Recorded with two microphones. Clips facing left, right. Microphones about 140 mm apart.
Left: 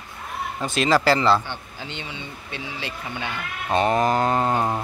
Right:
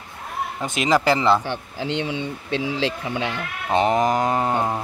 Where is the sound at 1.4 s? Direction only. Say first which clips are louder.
Right 8 dB; 90° right.